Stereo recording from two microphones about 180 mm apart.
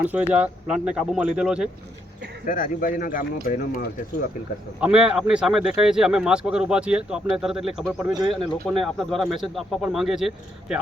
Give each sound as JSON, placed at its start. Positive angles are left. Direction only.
{"t": 0.0, "sound": "speech", "side_deg": -10}
{"t": 2.5, "sound": "speech", "side_deg": 50}
{"t": 4.8, "sound": "speech", "side_deg": -5}